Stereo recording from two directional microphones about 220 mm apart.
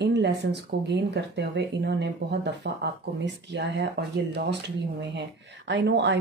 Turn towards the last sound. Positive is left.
turn(degrees=-50)  # may be behind; listen again after turning